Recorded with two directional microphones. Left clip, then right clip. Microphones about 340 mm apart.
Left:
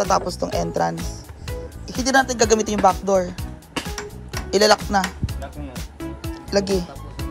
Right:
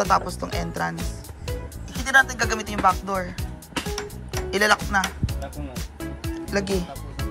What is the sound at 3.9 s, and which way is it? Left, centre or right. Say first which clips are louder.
Music: right 1 dB; centre.